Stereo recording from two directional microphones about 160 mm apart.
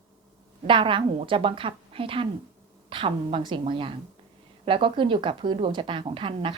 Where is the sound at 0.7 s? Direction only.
30° right (ahead or behind).